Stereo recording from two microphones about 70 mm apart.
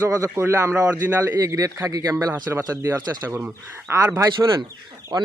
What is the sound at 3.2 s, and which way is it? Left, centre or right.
Speech, right.